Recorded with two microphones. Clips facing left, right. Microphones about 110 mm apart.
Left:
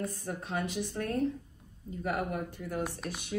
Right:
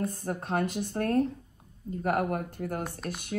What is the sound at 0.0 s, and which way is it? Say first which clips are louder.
Speech: right 4 dB; 50° right (ahead or behind).